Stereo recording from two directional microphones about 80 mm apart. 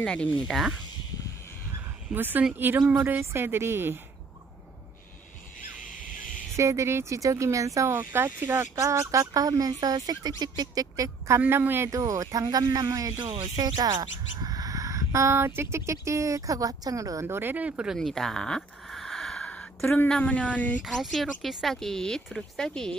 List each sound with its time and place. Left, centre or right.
0.0 s a woman's voice: centre
0.5 s speech: centre
2.1 s speech: right
6.5 s speech: right
7.9 s speech: right
11.2 s speech: right
11.9 s speech: right
17.4 s speech: right
17.9 s a sound: centre
20.1 s a woman's voice: centre
20.8 s speech: centre